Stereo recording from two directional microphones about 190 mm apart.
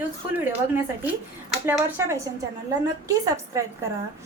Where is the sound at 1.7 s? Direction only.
10° right (ahead or behind).